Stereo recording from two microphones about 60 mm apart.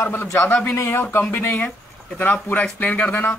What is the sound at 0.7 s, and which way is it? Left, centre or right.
Speech, left.